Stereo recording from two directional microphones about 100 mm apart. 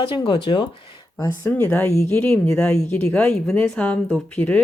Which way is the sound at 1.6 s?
15° left (ahead or behind).